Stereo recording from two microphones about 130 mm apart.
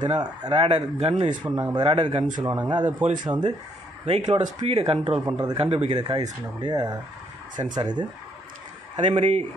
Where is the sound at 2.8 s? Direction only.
70° right (ahead or behind).